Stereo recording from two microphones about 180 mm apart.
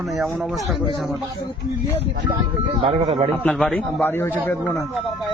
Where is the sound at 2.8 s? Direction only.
35° right (ahead or behind).